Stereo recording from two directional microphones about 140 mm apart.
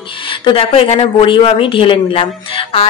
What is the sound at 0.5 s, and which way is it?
Speech, 40° left (ahead or behind).